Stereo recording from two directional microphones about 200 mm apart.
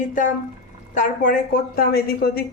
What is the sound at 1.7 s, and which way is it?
Speech, 50° left (ahead or behind).